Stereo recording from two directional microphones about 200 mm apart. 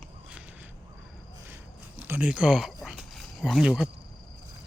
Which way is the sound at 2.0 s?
10° right (ahead or behind).